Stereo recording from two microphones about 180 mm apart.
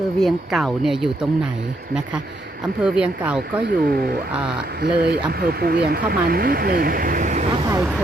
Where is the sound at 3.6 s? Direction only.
65° right (ahead or behind).